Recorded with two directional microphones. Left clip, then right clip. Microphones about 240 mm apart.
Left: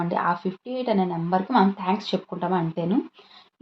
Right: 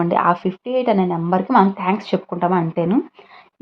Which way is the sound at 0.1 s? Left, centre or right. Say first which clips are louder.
Right 7 dB; right.